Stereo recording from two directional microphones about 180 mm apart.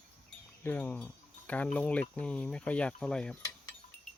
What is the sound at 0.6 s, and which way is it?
Speech, 10° left (ahead or behind).